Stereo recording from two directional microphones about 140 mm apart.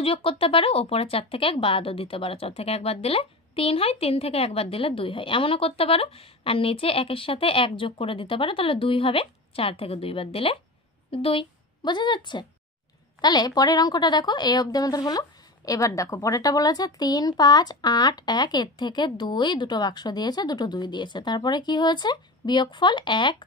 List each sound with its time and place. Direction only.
0.0 s a woman's voice: 40° left (ahead or behind)